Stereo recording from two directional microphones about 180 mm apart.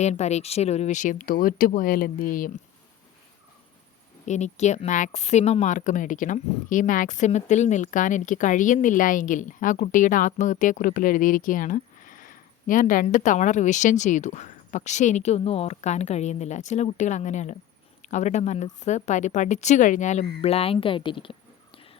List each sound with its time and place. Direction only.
0.0 s speech: 40° left (ahead or behind)
4.3 s a woman's voice: 40° left (ahead or behind)